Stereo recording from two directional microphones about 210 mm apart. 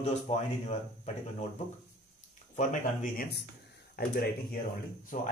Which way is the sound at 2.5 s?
35° left (ahead or behind).